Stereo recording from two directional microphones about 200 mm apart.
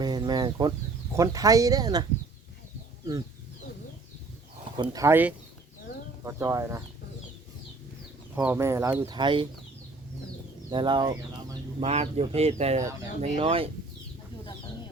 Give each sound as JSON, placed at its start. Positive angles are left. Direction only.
{"t": 0.0, "sound": "chicken", "side_deg": -20}
{"t": 1.1, "sound": "speech", "side_deg": -15}
{"t": 4.8, "sound": "speech", "side_deg": -15}
{"t": 8.4, "sound": "speech", "side_deg": -10}
{"t": 10.7, "sound": "speech", "side_deg": -25}
{"t": 11.8, "sound": "speech", "side_deg": -30}